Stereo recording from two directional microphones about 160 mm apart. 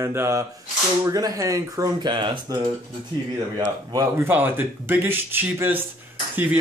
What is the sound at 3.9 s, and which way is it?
Speech, 20° right (ahead or behind).